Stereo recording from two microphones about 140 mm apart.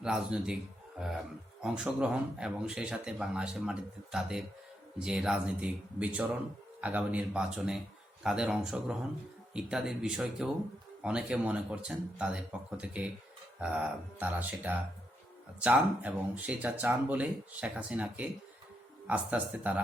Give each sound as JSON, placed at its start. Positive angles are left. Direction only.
{"t": 0.0, "sound": "speech", "side_deg": -5}
{"t": 1.6, "sound": "speech", "side_deg": -5}